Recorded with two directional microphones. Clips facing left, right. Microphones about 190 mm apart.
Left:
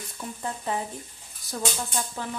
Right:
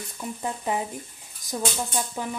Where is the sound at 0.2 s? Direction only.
15° right (ahead or behind).